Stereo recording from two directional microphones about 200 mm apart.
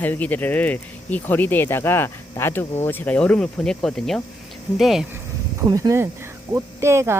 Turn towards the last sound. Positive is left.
turn(degrees=-15)  # may be behind; listen again after turning